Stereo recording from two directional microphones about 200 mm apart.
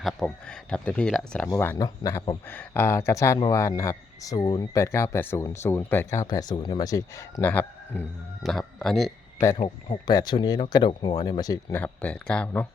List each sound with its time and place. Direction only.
0.0 s speech: 5° left (ahead or behind)
9.6 s speech: 25° left (ahead or behind); by 12.6 s 5° left (ahead or behind)